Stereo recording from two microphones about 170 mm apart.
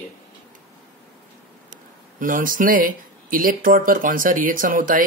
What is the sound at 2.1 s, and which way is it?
Speech, 50° right (ahead or behind).